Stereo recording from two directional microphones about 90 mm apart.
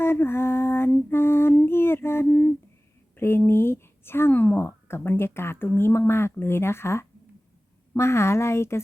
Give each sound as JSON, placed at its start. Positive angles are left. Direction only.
{"t": 0.0, "sound": "a sound", "side_deg": 25}
{"t": 1.1, "sound": "female singing", "side_deg": 25}
{"t": 3.2, "sound": "speech", "side_deg": 25}